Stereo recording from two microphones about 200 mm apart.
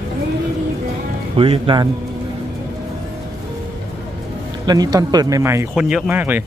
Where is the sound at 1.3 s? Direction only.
25° right (ahead or behind).